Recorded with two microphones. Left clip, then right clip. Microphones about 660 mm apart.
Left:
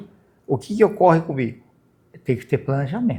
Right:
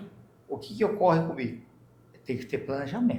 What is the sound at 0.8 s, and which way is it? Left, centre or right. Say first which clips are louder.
Speech: left 8 dB; left.